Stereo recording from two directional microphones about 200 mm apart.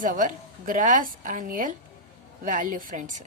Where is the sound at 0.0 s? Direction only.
40° right (ahead or behind).